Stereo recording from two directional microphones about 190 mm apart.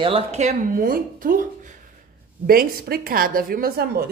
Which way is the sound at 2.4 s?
50° right (ahead or behind).